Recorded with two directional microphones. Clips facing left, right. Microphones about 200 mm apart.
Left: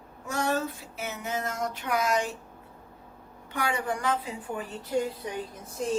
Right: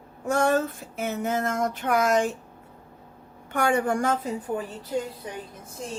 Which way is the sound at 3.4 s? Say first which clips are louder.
Right 6 dB; 50° right (ahead or behind).